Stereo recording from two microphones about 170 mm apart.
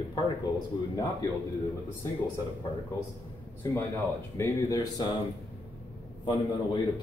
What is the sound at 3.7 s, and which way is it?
A man's voice, 15° left (ahead or behind).